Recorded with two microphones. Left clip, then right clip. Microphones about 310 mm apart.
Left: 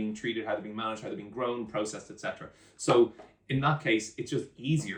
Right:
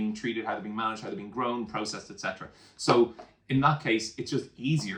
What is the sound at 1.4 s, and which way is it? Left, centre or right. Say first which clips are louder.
Speech: right 1 dB; centre.